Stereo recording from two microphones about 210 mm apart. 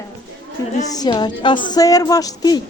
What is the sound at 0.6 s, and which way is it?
A woman's voice, 15° left (ahead or behind).